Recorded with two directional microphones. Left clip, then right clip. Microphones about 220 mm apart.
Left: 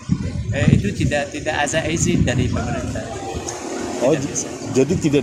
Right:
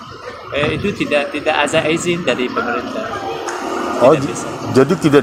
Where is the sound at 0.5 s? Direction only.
55° left (ahead or behind).